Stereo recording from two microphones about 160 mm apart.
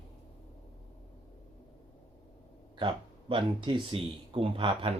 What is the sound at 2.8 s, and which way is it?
Speech, 30° right (ahead or behind).